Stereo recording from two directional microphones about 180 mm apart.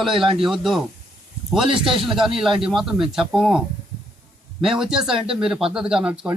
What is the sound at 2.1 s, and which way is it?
Speech, centre (ahead or behind).